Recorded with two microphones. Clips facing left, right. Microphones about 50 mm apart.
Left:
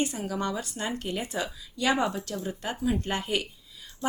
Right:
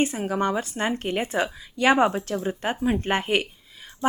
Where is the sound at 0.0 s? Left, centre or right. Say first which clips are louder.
Right 6 dB; right.